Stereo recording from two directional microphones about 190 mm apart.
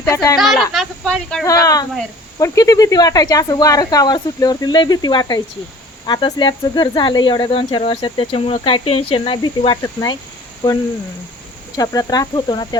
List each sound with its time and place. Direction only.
0.0 s speech: 15° left (ahead or behind)
0.3 s speech: centre (ahead or behind)
1.5 s speech: 20° left (ahead or behind)
11.8 s speech: 20° left (ahead or behind)